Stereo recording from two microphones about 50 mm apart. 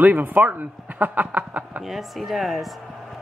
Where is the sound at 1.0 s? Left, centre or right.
Right.